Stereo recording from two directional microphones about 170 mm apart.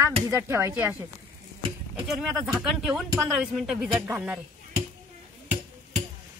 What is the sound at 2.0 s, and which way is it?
Speech, centre (ahead or behind).